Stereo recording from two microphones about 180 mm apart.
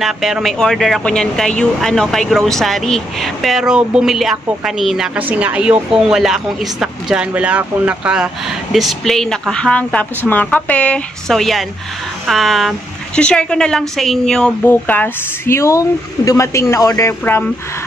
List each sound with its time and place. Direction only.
0.0 s speech: centre (ahead or behind)